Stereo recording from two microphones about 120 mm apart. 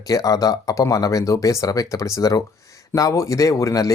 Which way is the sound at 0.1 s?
30° left (ahead or behind).